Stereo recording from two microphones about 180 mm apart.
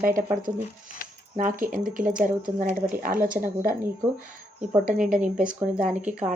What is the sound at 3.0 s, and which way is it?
Speech, 50° right (ahead or behind).